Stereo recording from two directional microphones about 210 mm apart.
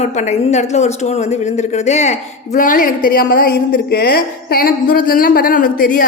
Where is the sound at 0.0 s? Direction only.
30° left (ahead or behind).